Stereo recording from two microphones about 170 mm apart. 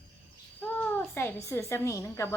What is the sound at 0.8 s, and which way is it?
A child's voice, 10° left (ahead or behind).